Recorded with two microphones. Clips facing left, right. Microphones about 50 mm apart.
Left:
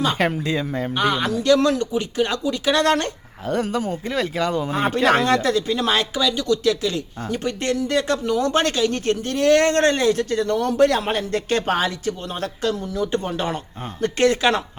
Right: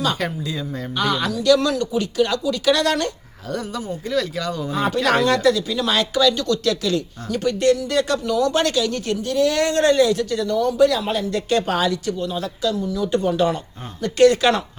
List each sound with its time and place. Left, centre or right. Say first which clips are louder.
0.2 s speech: left 4 dB; left
6.1 s speech: right 2 dB; centre